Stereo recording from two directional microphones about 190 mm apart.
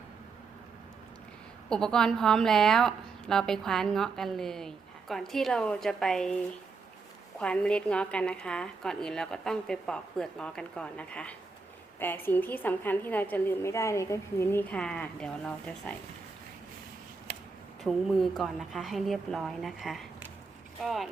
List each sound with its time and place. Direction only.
1.7 s a woman's voice: 5° left (ahead or behind)
7.3 s a woman's voice: 5° left (ahead or behind)
17.3 s a sound: 40° right (ahead or behind)
17.8 s a woman's voice: centre (ahead or behind)